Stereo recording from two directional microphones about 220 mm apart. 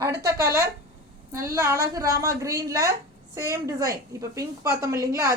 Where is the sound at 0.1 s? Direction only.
45° right (ahead or behind).